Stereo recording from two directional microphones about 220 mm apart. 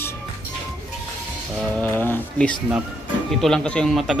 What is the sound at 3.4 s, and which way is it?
Speech, 5° left (ahead or behind).